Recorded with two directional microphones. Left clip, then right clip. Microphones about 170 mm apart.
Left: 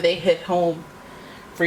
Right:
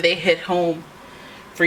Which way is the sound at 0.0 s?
30° right (ahead or behind).